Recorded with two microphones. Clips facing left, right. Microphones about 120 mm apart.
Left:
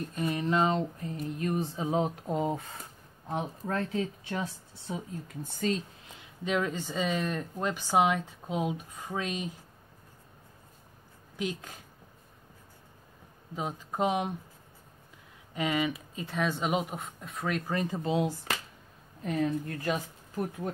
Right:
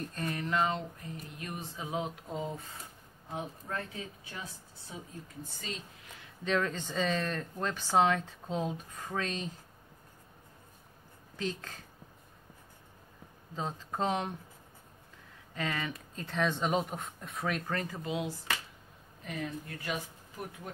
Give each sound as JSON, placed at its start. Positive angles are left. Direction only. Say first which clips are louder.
{"t": 0.1, "sound": "a sound", "louder": "left 6 dB", "side_deg": 15}
{"t": 1.4, "sound": "speech", "louder": "left 11 dB", "side_deg": 35}
{"t": 2.3, "sound": "speech", "louder": "left 7 dB", "side_deg": 60}
{"t": 3.3, "sound": "speech", "louder": "left 6 dB", "side_deg": 80}
{"t": 6.0, "sound": "speech", "louder": "right 2 dB", "side_deg": 20}
{"t": 11.3, "sound": "speech", "louder": "left 2 dB", "side_deg": 15}
{"t": 13.6, "sound": "speech", "louder": "left 3 dB", "side_deg": 15}
{"t": 15.5, "sound": "speech", "louder": "left 6 dB", "side_deg": 15}
{"t": 17.6, "sound": "a sound", "louder": "left 5 dB", "side_deg": 20}
{"t": 19.2, "sound": "speech", "louder": "left 9 dB", "side_deg": 40}